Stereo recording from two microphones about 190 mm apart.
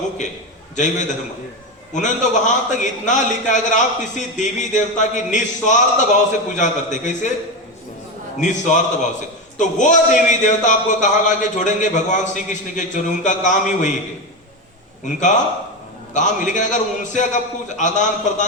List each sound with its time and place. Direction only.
1.9 s a man's voice: 40° left (ahead or behind)
8.4 s a man's voice: 40° left (ahead or behind)
15.0 s a man's voice: 40° left (ahead or behind)